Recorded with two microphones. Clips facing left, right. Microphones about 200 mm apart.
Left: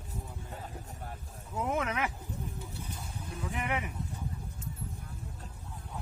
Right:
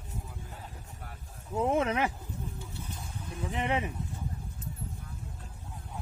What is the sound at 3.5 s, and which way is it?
Speech, 25° right (ahead or behind).